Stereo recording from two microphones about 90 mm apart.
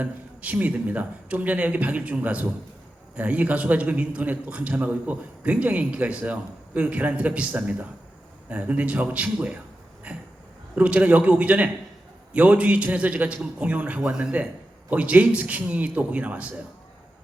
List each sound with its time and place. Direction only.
0.0 s a man's voice: 15° right (ahead or behind)